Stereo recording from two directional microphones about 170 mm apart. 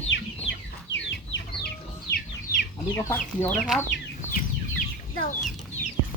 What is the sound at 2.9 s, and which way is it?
Speech, 15° left (ahead or behind).